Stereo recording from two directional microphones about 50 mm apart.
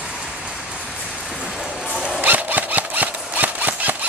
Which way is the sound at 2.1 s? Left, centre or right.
Right.